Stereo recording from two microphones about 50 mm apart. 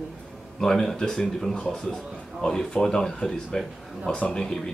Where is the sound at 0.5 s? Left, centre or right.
Centre.